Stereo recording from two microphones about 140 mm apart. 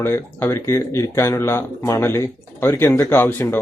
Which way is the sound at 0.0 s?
15° left (ahead or behind).